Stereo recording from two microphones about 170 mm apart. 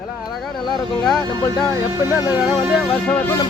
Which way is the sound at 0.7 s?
Centre (ahead or behind).